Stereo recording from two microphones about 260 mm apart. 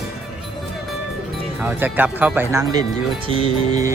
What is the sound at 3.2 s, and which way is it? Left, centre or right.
Music, right.